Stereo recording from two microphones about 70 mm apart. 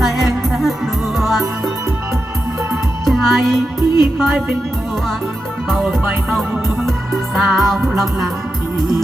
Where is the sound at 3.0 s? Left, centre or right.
Centre.